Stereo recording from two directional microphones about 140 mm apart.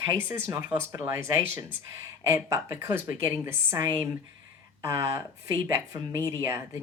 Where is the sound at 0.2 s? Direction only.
15° right (ahead or behind).